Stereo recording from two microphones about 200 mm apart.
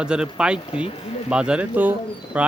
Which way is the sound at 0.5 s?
25° left (ahead or behind).